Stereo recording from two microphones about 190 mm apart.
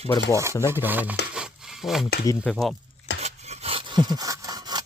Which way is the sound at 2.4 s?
Centre (ahead or behind).